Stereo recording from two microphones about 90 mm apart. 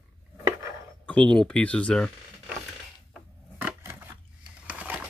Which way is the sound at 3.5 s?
20° right (ahead or behind).